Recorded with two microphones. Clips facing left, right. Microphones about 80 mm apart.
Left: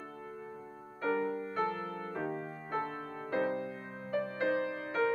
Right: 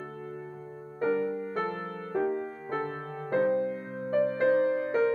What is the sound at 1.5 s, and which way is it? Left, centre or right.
Music, right.